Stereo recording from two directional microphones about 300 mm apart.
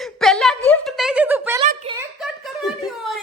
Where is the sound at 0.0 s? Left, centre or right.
Centre.